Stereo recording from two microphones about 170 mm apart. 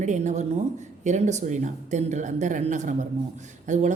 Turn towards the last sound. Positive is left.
turn(degrees=-45)  # may be behind; listen again after turning